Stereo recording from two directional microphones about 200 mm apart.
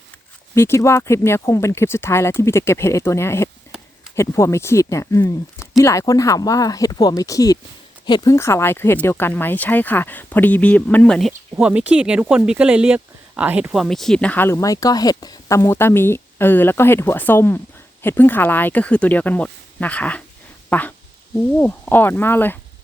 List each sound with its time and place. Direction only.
0.5 s speech: 15° left (ahead or behind)